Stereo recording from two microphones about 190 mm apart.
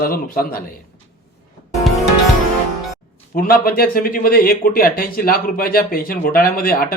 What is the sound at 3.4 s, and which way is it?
Speech, 50° left (ahead or behind).